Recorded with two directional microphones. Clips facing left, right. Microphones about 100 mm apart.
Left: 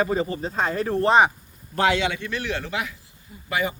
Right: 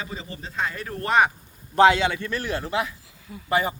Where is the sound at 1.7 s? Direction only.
30° right (ahead or behind).